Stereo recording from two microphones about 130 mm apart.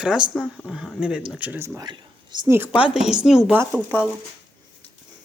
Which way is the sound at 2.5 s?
10° right (ahead or behind).